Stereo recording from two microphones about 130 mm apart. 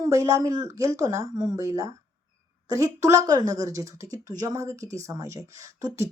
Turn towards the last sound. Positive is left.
turn(degrees=-25)  # may be behind; listen again after turning